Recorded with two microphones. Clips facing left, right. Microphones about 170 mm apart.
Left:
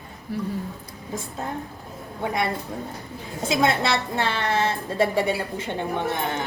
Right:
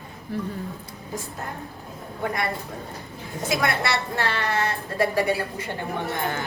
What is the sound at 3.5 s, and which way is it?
A woman's voice, 25° left (ahead or behind).